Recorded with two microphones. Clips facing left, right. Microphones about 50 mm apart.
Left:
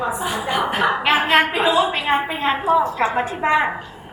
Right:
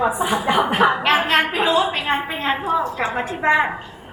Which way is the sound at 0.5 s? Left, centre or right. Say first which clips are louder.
Right 3 dB; centre.